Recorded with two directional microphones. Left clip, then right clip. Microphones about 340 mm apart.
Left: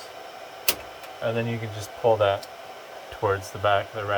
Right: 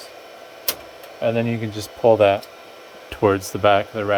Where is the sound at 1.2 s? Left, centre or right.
Right.